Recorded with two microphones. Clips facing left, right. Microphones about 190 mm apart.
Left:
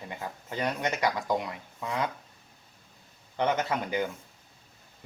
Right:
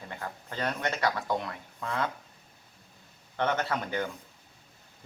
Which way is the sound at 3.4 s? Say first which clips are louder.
Left 2 dB; 15° left (ahead or behind).